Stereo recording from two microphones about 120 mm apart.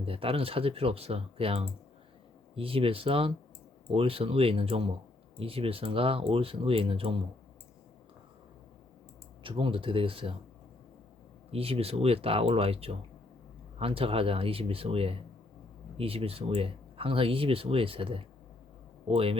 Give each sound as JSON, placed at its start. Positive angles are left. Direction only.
{"t": 0.0, "sound": "speech", "side_deg": -50}
{"t": 9.4, "sound": "speech", "side_deg": -45}
{"t": 11.5, "sound": "speech", "side_deg": -55}